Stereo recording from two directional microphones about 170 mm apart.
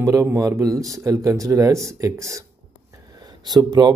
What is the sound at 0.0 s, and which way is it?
Speech, 15° right (ahead or behind).